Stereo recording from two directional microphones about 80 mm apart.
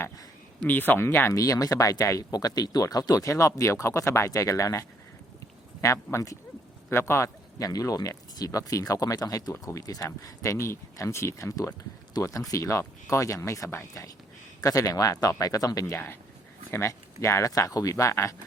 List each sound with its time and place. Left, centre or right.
0.7 s speech: left
1.3 s speech: left